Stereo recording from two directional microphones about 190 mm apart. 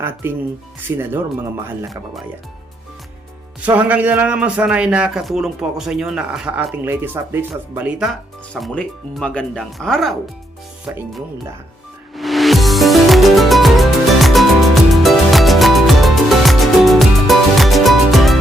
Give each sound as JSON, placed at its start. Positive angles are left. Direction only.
{"t": 0.0, "sound": "a man's voice", "side_deg": -10}
{"t": 3.6, "sound": "a man's voice", "side_deg": -10}
{"t": 12.1, "sound": "music", "side_deg": 0}